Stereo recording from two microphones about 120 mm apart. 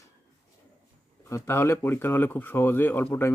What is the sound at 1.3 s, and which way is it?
Speech, 20° left (ahead or behind).